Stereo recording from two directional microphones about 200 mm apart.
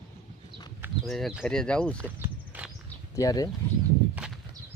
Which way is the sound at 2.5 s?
10° right (ahead or behind).